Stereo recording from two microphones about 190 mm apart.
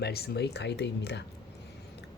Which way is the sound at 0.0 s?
55° left (ahead or behind).